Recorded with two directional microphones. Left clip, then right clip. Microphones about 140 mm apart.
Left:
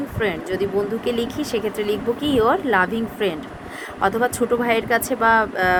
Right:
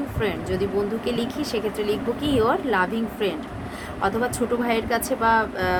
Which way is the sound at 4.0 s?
50° left (ahead or behind).